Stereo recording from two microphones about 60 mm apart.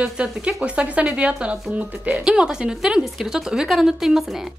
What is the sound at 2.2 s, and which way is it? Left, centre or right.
Speech, centre.